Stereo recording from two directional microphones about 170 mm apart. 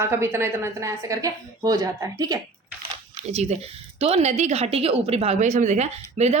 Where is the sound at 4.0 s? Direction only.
40° right (ahead or behind).